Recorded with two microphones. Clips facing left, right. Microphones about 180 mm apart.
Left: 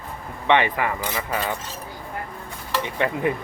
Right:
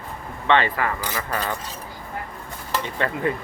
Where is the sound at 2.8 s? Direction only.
15° left (ahead or behind).